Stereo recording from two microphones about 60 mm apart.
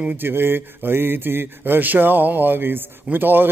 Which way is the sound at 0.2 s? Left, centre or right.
Right.